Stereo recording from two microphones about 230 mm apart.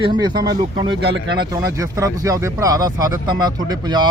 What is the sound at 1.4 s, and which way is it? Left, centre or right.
Speech, centre.